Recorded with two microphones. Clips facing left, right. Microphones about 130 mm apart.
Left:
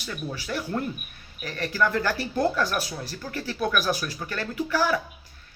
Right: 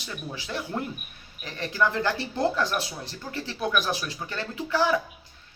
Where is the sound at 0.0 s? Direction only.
20° right (ahead or behind).